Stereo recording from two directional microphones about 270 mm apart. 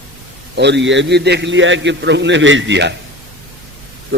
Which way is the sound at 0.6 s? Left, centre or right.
Right.